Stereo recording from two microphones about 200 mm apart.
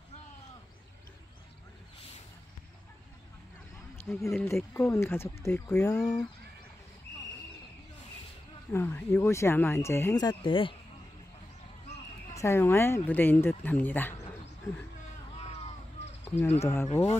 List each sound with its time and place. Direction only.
4.0 s speech: 5° left (ahead or behind)
8.7 s speech: 10° left (ahead or behind)
12.4 s speech: 15° left (ahead or behind)
16.5 s speech: 15° left (ahead or behind)
16.9 s speech: 30° left (ahead or behind)